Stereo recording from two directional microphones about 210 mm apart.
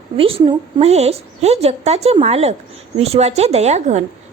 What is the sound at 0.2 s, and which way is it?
A woman's voice, 25° right (ahead or behind).